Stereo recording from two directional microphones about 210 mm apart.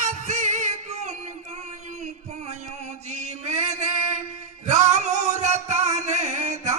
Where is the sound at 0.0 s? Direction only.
35° right (ahead or behind).